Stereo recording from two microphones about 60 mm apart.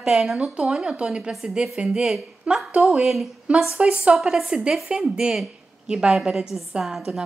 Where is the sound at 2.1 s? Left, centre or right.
Centre.